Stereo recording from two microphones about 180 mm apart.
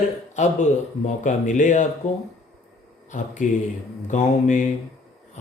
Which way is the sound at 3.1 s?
45° left (ahead or behind).